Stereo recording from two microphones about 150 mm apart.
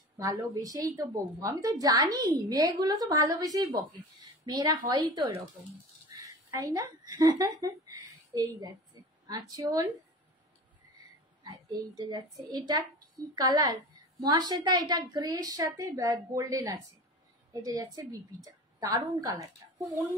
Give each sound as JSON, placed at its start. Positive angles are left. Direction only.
{"t": 0.2, "sound": "a woman's voice", "side_deg": -20}
{"t": 11.4, "sound": "a woman's voice", "side_deg": -25}